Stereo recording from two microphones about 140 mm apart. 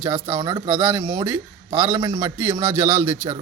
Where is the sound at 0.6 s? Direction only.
10° right (ahead or behind).